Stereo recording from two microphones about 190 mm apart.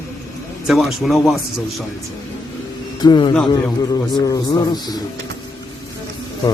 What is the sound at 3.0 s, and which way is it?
Music, 25° left (ahead or behind).